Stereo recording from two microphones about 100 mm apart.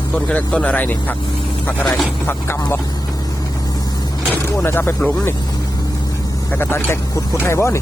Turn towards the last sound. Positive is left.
turn(degrees=25)  # may be behind; listen again after turning